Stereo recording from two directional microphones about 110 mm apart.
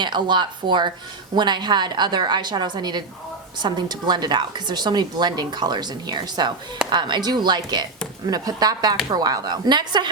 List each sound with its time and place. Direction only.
0.0 s a woman's voice: 45° right (ahead or behind)